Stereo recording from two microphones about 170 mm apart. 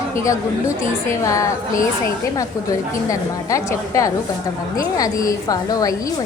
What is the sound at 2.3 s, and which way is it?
A woman's voice, 20° left (ahead or behind).